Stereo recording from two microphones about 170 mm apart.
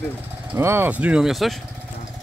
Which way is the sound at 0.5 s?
15° right (ahead or behind).